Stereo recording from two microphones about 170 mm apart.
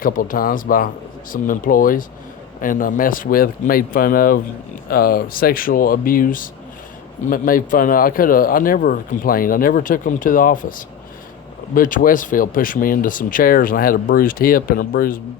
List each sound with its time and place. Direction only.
0.0 s speech: 55° left (ahead or behind)